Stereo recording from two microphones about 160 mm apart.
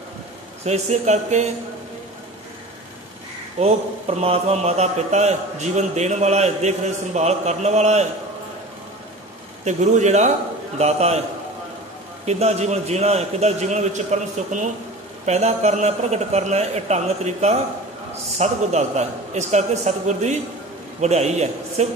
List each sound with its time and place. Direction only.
0.7 s a man's voice: 45° right (ahead or behind)
3.5 s a man's voice: 40° right (ahead or behind)
9.7 s a man's voice: 45° right (ahead or behind)
12.3 s a man's voice: 45° right (ahead or behind)